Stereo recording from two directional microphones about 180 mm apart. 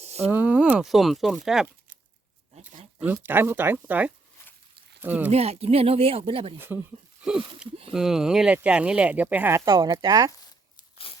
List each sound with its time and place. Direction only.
0.0 s a sound: 35° right (ahead or behind)
0.3 s speech: 10° right (ahead or behind)
2.6 s a sound: 35° right (ahead or behind)
3.1 s speech: 10° right (ahead or behind)
5.3 s speech: 35° right (ahead or behind)
6.6 s speech: 10° right (ahead or behind)